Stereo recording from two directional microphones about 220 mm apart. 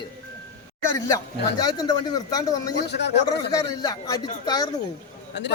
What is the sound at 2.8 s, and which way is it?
Speech, 50° left (ahead or behind).